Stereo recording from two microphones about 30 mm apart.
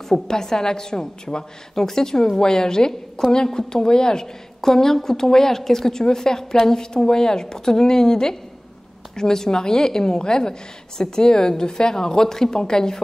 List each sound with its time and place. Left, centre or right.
0.1 s a woman's voice: left